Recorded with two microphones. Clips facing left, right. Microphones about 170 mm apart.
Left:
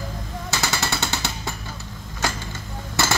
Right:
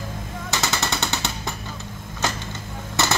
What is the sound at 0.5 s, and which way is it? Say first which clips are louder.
Music: even; 20° right (ahead or behind).